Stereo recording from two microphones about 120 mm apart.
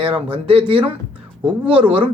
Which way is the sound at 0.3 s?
50° right (ahead or behind).